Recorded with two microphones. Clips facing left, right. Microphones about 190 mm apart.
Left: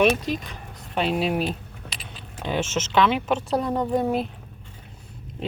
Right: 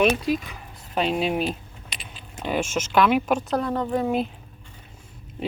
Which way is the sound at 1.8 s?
70° left (ahead or behind).